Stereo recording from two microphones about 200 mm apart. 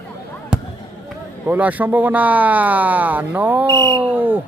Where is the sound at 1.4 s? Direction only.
10° right (ahead or behind).